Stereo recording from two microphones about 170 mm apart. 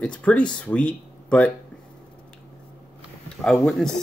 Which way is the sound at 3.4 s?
5° left (ahead or behind).